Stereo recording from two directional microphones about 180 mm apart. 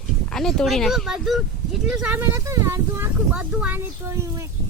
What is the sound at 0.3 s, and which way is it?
Speech, centre (ahead or behind).